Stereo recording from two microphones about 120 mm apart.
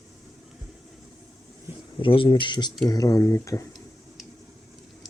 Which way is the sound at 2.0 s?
45° left (ahead or behind).